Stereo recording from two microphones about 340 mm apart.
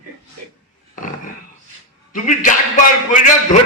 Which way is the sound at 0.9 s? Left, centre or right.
Left.